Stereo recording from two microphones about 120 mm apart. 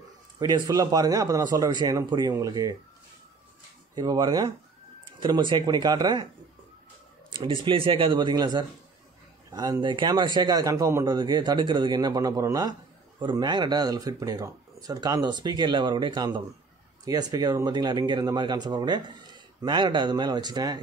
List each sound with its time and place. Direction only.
0.4 s speech: 30° right (ahead or behind)
3.9 s speech: 35° right (ahead or behind)
7.3 s speech: 45° right (ahead or behind)